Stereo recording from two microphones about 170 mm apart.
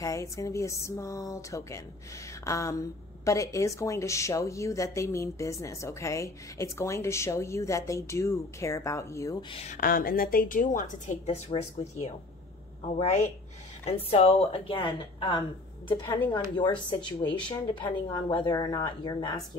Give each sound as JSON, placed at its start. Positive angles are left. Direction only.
{"t": 0.0, "sound": "a woman's voice", "side_deg": 20}
{"t": 9.5, "sound": "speech", "side_deg": 35}
{"t": 9.8, "sound": "a woman's voice", "side_deg": 60}